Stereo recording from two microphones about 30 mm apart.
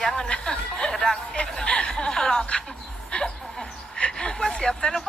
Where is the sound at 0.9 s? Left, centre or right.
Centre.